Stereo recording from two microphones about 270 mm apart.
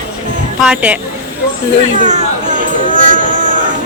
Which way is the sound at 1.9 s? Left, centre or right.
Right.